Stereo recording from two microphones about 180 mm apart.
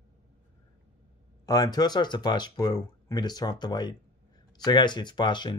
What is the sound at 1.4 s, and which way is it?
Speech, 20° left (ahead or behind).